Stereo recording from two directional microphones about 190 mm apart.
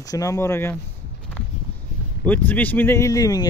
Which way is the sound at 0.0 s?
20° left (ahead or behind).